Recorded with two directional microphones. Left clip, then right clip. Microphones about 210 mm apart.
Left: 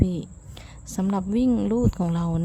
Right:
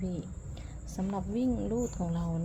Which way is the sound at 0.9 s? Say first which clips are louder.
Left 9 dB; 30° left (ahead or behind).